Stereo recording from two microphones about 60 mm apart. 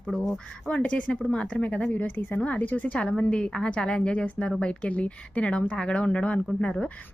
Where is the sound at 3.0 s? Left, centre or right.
Centre.